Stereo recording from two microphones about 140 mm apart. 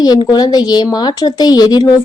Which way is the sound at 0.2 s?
30° left (ahead or behind).